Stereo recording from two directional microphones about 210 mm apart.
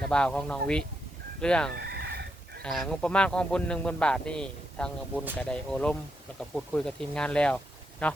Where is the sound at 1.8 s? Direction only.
50° right (ahead or behind).